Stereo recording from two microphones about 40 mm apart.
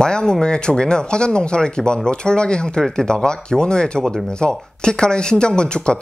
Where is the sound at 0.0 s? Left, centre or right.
Centre.